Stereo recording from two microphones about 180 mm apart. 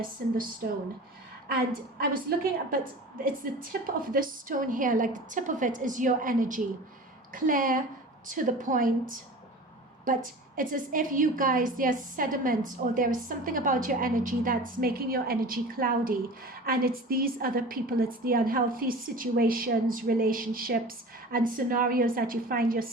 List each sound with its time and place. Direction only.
2.0 s a woman's voice: 50° right (ahead or behind)